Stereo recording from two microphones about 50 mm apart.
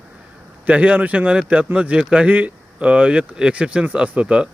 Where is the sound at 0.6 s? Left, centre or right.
Right.